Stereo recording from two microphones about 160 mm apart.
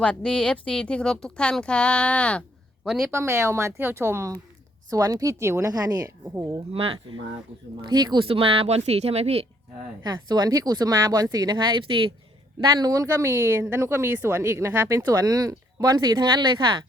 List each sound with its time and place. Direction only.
0.0 s speech: 5° left (ahead or behind)
3.1 s speech: 15° right (ahead or behind)
7.8 s speech: 25° right (ahead or behind)
10.0 s speech: 25° right (ahead or behind)